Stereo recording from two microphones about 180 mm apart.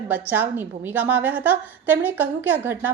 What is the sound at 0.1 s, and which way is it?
A woman's voice, 10° right (ahead or behind).